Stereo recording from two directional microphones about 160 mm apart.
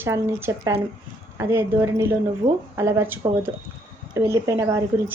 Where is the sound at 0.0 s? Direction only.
15° right (ahead or behind).